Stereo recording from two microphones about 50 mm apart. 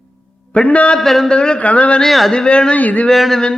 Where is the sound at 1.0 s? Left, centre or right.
Centre.